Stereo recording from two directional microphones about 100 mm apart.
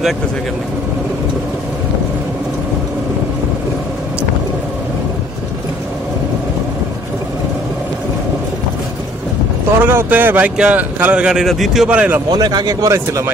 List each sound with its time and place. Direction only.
9.8 s speech: 20° right (ahead or behind); by 11.9 s centre (ahead or behind)
11.9 s speech: 15° right (ahead or behind)
12.3 s speech: 40° right (ahead or behind)